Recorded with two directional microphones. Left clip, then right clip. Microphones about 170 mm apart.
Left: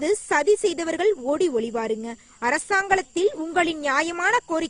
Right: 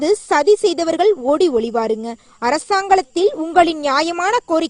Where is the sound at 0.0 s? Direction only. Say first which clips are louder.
Right 6 dB; 35° right (ahead or behind).